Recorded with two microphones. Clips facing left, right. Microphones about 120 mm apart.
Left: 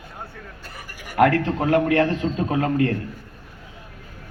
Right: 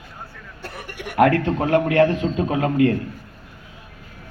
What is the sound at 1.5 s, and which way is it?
A man's voice, 25° right (ahead or behind).